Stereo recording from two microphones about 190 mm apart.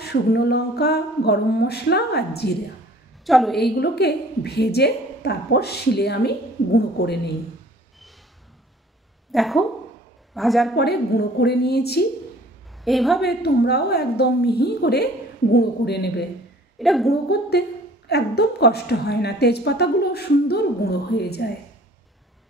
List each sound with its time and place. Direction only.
0.0 s a woman's voice: 60° left (ahead or behind)
3.3 s a woman's voice: centre (ahead or behind)
3.5 s a woman's voice: 60° left (ahead or behind)
9.3 s a woman's voice: centre (ahead or behind)
10.8 s a woman's voice: 60° left (ahead or behind)
12.8 s a woman's voice: centre (ahead or behind)
13.2 s a woman's voice: 60° left (ahead or behind)
16.7 s a woman's voice: centre (ahead or behind)
17.1 s a woman's voice: 60° left (ahead or behind)